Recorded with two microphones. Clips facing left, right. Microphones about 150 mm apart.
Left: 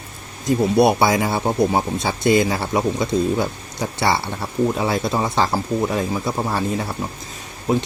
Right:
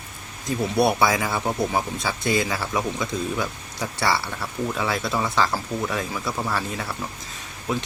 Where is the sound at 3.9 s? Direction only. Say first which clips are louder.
Left 3 dB; 25° left (ahead or behind).